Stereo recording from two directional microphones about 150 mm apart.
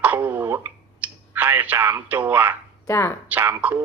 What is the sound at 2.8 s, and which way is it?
Speech, 20° left (ahead or behind).